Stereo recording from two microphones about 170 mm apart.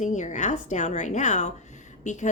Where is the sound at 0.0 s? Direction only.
45° left (ahead or behind).